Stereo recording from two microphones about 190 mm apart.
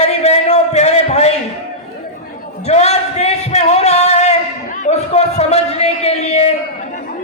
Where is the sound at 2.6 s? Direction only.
35° left (ahead or behind).